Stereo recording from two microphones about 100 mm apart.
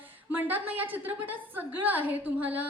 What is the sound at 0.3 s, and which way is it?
A woman's voice, 15° right (ahead or behind).